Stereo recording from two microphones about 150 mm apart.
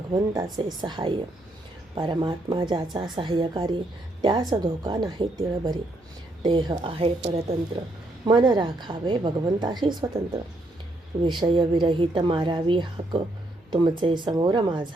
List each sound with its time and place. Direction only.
0.1 s a woman's voice: 25° right (ahead or behind)
11.2 s a woman's voice: 30° right (ahead or behind)